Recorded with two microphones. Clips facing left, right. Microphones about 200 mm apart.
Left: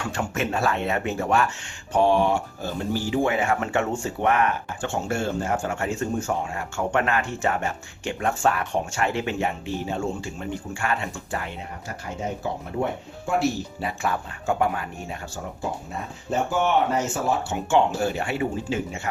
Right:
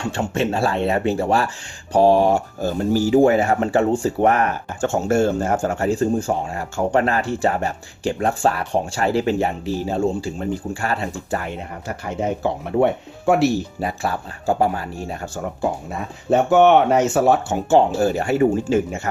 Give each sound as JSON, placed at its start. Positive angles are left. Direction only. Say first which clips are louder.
{"t": 0.0, "sound": "speech", "louder": "right 5 dB", "side_deg": -30}
{"t": 12.4, "sound": "speech", "louder": "right 10 dB", "side_deg": -75}
{"t": 13.8, "sound": "speech", "louder": "right 3 dB", "side_deg": -35}
{"t": 16.3, "sound": "speech", "louder": "right 9 dB", "side_deg": -70}
{"t": 17.5, "sound": "speech", "louder": "right 5 dB", "side_deg": -40}